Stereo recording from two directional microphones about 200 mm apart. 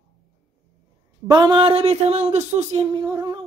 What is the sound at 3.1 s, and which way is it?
Humming, 20° right (ahead or behind).